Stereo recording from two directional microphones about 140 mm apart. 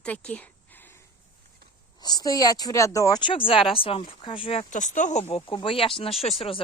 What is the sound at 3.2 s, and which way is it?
Speech, 40° left (ahead or behind).